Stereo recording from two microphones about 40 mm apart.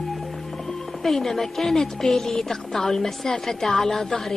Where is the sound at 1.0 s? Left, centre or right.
Centre.